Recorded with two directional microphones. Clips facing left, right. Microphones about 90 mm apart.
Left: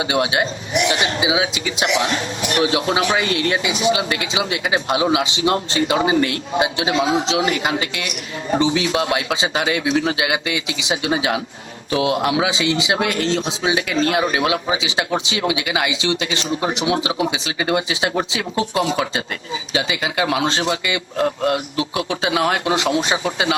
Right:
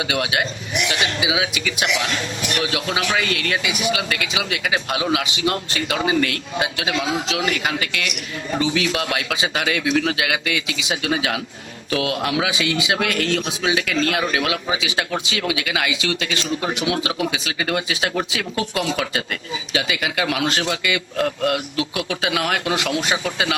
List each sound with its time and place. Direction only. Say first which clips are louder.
0.0 s a man's voice: left 3 dB; 25° left (ahead or behind)